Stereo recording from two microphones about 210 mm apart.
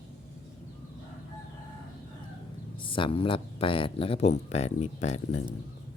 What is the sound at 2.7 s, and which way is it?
Speech, 25° left (ahead or behind).